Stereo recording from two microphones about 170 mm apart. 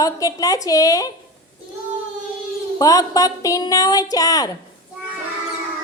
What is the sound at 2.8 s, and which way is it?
A woman's voice, 20° left (ahead or behind).